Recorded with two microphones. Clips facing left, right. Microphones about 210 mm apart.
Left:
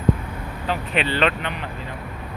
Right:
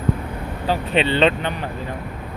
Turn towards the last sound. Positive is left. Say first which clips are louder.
# right 4 dB
turn(degrees=-25)  # may be behind; listen again after turning